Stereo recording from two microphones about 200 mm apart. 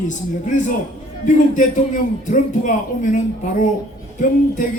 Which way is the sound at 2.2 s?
40° left (ahead or behind).